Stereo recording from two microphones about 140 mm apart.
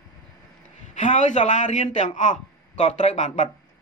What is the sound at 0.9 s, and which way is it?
A man's voice, 60° left (ahead or behind).